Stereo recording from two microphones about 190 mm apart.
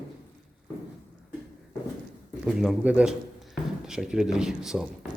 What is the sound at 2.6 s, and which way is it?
Speech, 5° right (ahead or behind).